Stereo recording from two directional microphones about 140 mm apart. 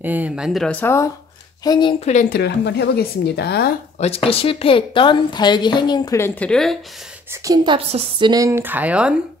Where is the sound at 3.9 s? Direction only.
45° left (ahead or behind); by 6.2 s 30° left (ahead or behind).